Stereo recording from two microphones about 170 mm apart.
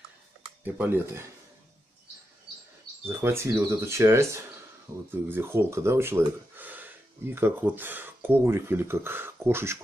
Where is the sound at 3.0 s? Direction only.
15° right (ahead or behind).